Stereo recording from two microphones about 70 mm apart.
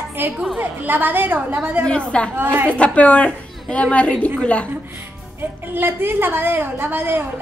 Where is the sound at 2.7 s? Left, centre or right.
Centre.